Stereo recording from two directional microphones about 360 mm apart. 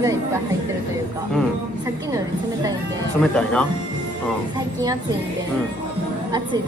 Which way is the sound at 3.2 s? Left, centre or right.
Centre.